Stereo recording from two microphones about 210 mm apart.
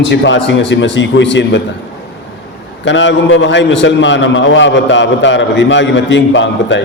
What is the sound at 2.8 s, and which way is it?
A man's voice, 60° left (ahead or behind).